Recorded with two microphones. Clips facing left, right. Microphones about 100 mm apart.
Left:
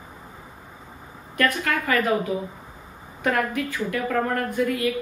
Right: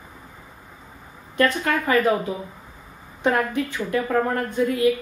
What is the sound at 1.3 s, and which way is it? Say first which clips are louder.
Speech: right 2 dB; 25° right (ahead or behind).